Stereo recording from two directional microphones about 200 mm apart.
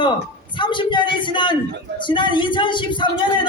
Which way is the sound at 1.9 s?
25° left (ahead or behind).